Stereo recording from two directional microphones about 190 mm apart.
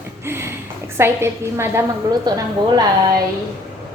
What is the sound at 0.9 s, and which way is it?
A woman's voice, 15° right (ahead or behind).